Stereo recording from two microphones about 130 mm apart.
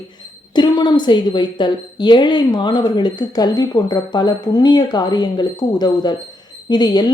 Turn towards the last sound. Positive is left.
turn(degrees=35)  # may be behind; listen again after turning